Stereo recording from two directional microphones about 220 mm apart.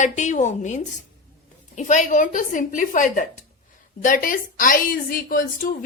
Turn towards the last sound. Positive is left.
turn(degrees=40)  # may be behind; listen again after turning